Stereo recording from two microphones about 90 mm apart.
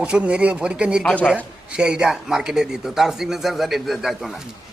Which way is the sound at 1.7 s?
10° right (ahead or behind).